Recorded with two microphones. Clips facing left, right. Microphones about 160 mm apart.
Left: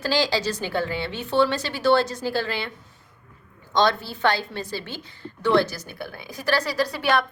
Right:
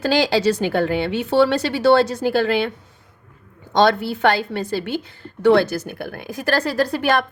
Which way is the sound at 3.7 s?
60° right (ahead or behind).